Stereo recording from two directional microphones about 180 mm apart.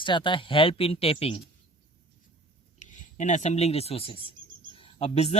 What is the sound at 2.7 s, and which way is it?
Speech, 40° left (ahead or behind).